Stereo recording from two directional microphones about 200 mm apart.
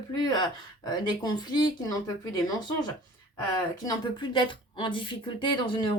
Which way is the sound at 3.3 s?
20° left (ahead or behind).